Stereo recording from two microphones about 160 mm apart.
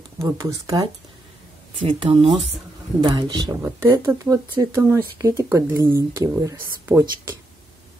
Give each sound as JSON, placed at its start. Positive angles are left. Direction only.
{"t": 0.2, "sound": "speech", "side_deg": -20}
{"t": 1.9, "sound": "speech", "side_deg": -35}
{"t": 3.6, "sound": "speech", "side_deg": -15}